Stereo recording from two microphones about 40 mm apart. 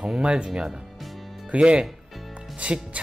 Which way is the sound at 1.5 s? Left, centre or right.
Right.